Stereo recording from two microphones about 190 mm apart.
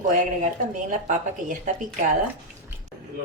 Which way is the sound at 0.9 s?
40° right (ahead or behind).